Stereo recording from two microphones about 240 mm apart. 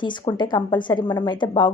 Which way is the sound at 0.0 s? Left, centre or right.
Centre.